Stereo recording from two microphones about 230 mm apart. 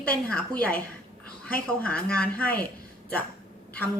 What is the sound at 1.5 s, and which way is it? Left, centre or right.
Speech, centre.